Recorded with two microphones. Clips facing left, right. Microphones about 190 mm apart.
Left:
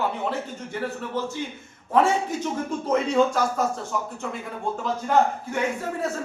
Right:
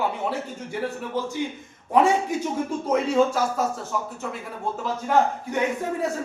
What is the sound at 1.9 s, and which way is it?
A man's voice, 15° right (ahead or behind).